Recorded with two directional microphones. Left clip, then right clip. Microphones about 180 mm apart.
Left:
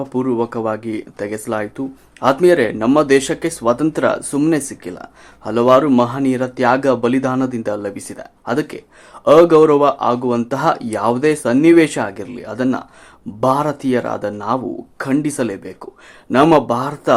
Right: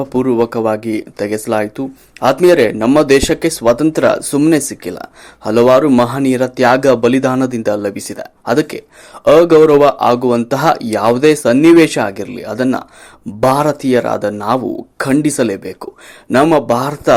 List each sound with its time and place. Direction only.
0.0 s speech: 20° right (ahead or behind)